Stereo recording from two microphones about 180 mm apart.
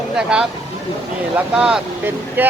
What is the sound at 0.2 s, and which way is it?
Speech, 5° right (ahead or behind).